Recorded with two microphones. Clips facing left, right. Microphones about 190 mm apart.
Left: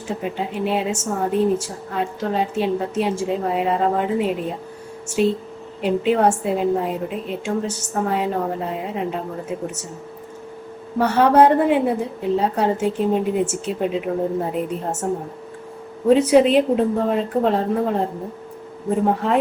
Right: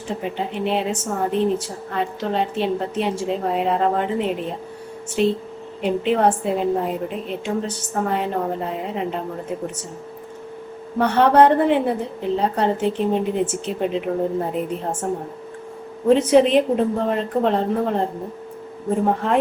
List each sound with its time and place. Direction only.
0.1 s a woman's voice: 5° left (ahead or behind)
5.8 s a woman's voice: 5° left (ahead or behind)
10.9 s a woman's voice: 5° left (ahead or behind)
16.0 s a woman's voice: 5° left (ahead or behind)
19.0 s a woman's voice: centre (ahead or behind)